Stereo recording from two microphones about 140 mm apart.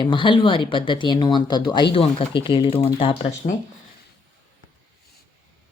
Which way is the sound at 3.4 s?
55° left (ahead or behind).